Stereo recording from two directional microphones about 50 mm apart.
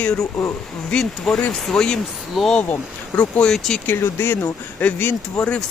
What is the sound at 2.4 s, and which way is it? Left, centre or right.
Speech, centre.